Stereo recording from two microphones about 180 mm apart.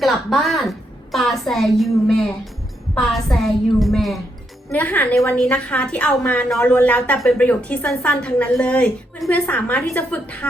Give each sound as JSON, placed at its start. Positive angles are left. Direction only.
{"t": 0.0, "sound": "a woman's voice", "side_deg": 0}